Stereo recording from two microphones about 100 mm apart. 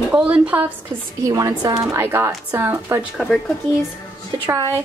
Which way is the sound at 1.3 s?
35° right (ahead or behind).